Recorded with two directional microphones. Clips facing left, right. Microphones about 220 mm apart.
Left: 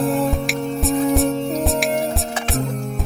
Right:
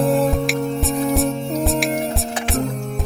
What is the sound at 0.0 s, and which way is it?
Music, centre (ahead or behind).